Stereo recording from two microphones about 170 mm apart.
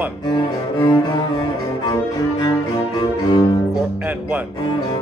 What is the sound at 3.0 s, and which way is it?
Music, 20° left (ahead or behind).